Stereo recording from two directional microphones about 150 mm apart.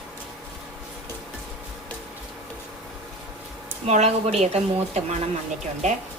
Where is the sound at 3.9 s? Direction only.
45° right (ahead or behind).